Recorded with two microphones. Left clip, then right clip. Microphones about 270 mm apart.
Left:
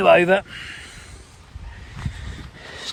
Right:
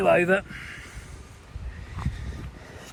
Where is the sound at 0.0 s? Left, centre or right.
Left.